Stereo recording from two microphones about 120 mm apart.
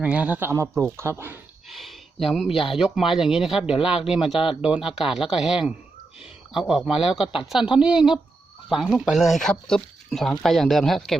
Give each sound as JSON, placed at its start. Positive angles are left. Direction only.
{"t": 0.0, "sound": "speech", "side_deg": -10}
{"t": 1.7, "sound": "a sound", "side_deg": 0}
{"t": 2.8, "sound": "speech", "side_deg": -5}